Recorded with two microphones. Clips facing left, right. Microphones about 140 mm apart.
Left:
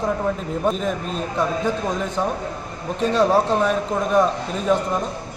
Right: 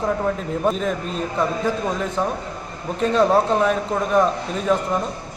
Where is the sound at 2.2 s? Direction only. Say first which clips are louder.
Even; centre (ahead or behind).